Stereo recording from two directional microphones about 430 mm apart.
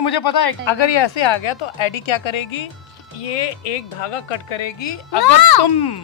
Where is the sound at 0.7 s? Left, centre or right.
Left.